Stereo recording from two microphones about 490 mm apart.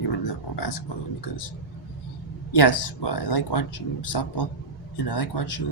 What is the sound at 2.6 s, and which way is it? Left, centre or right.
Speech, left.